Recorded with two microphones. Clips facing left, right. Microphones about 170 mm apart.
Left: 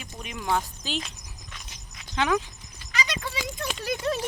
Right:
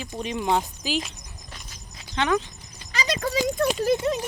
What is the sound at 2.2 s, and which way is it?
Speech, 5° left (ahead or behind).